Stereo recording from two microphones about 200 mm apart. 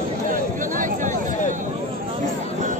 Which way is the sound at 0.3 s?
40° right (ahead or behind).